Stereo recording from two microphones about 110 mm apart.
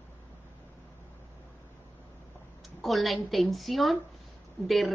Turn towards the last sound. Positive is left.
turn(degrees=0)  # may be behind; listen again after turning